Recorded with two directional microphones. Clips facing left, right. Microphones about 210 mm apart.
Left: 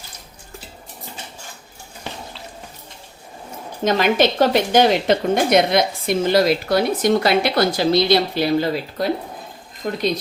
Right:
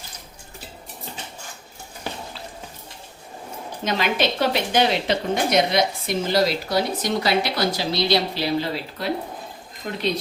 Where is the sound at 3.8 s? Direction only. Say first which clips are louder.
Left 6 dB; 50° left (ahead or behind).